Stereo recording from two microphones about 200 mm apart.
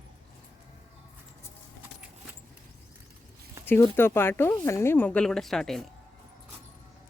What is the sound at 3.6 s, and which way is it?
Speech, 10° left (ahead or behind).